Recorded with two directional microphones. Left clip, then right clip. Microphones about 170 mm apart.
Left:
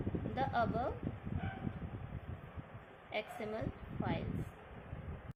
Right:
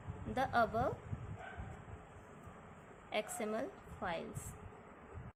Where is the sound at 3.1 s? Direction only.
25° right (ahead or behind).